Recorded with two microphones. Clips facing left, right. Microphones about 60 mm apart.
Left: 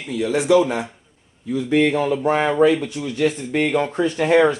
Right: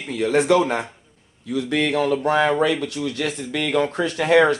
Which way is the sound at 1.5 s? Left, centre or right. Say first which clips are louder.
Left 3 dB; right.